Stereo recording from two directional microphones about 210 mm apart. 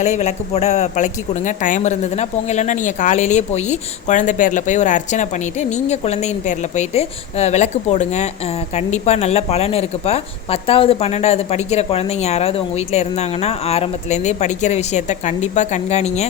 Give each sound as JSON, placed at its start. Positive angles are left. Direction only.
{"t": 0.0, "sound": "speech", "side_deg": 35}